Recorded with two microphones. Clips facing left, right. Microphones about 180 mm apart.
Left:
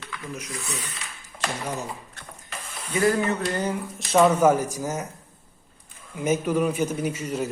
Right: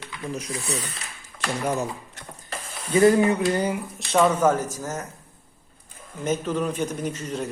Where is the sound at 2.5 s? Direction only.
30° right (ahead or behind).